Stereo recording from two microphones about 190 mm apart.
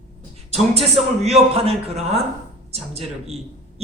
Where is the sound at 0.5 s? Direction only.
35° right (ahead or behind).